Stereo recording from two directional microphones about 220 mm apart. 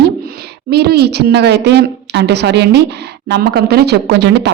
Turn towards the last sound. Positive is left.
turn(degrees=-50)  # may be behind; listen again after turning